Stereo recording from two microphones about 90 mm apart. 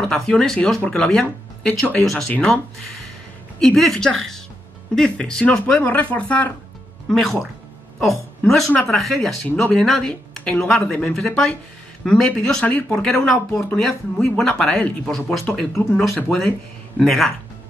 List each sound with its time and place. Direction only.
0.1 s speech: 5° left (ahead or behind)
7.1 s a woman's voice: 5° left (ahead or behind)
12.6 s speech: 15° left (ahead or behind)
17.0 s speech: 5° left (ahead or behind)